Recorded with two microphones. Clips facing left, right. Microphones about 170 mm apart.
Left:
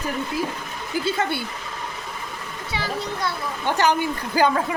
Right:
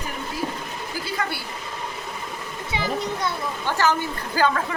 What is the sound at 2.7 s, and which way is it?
Speech, 20° right (ahead or behind).